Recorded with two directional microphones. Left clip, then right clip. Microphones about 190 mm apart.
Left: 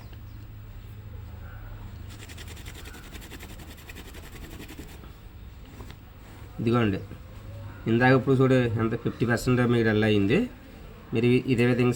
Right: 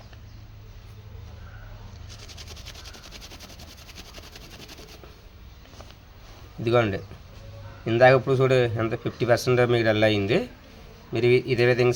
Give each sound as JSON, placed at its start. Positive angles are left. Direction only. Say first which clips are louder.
{"t": 6.7, "sound": "speech", "louder": "right 4 dB", "side_deg": -65}